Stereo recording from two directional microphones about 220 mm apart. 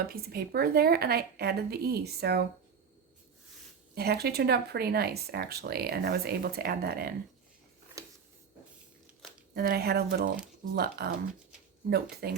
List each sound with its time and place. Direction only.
0.1 s speech: 45° right (ahead or behind)
3.9 s speech: 45° right (ahead or behind)
9.6 s speech: 45° right (ahead or behind)
12.2 s speech: 45° right (ahead or behind)